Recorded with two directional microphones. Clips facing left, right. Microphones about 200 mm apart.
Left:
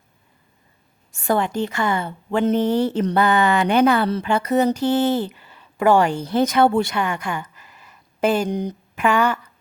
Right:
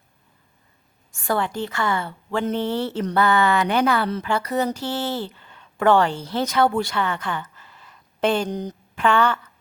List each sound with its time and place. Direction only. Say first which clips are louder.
1.3 s speech: left 3 dB; 20° left (ahead or behind)